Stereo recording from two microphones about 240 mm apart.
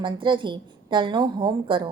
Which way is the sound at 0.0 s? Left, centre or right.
Centre.